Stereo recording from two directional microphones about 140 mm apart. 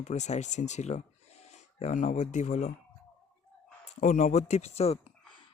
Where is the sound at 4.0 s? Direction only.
60° left (ahead or behind).